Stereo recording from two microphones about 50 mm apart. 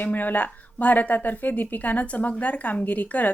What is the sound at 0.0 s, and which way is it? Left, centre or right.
Speech, left.